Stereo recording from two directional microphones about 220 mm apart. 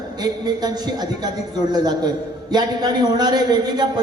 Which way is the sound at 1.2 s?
20° right (ahead or behind).